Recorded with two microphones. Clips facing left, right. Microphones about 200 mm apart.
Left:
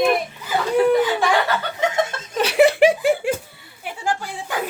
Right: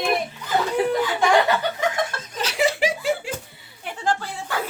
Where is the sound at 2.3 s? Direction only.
60° left (ahead or behind).